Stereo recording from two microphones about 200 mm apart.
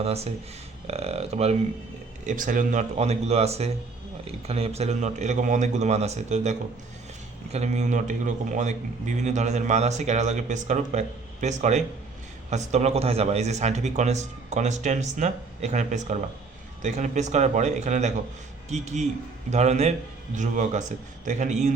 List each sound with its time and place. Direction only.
0.0 s a man's voice: 30° right (ahead or behind)